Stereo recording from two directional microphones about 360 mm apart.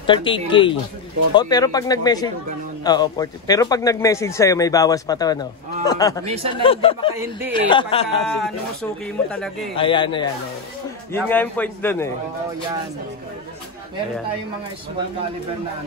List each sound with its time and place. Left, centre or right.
0.0 s a man's voice: centre
7.2 s a man's voice: centre
7.7 s a man's voice: centre
8.3 s a man's voice: centre
9.8 s a man's voice: centre